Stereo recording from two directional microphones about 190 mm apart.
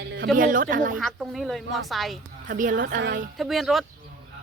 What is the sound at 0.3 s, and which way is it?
Speech, 45° right (ahead or behind).